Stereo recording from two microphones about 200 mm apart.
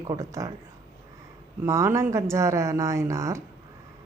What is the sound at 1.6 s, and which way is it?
A woman's voice, 15° right (ahead or behind).